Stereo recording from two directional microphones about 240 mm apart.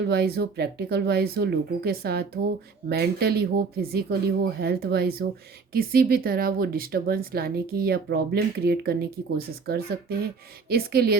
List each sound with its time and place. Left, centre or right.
0.0 s speech: right